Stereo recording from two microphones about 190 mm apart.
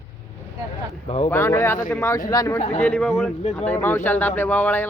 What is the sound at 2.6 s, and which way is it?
Speech, 35° left (ahead or behind).